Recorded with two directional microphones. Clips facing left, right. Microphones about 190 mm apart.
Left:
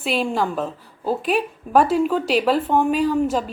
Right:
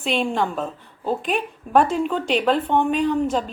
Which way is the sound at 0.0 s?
5° left (ahead or behind).